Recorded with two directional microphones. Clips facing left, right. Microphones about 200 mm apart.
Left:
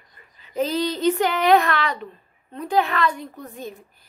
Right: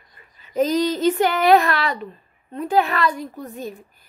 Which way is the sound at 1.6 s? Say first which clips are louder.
Right 1 dB; 40° right (ahead or behind).